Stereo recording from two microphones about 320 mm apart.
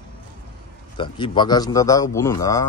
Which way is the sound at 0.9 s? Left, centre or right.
Centre.